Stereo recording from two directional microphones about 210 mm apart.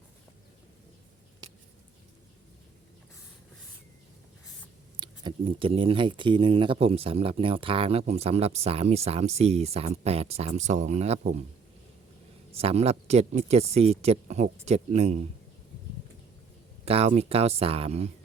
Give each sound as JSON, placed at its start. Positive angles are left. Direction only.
{"t": 4.9, "sound": "speech", "side_deg": -25}
{"t": 12.5, "sound": "speech", "side_deg": -30}
{"t": 16.8, "sound": "speech", "side_deg": -30}